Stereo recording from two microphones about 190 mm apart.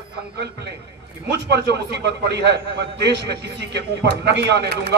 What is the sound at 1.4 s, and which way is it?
A man's voice, 65° right (ahead or behind).